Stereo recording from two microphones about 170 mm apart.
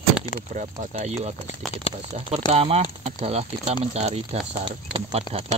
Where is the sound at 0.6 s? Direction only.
45° right (ahead or behind).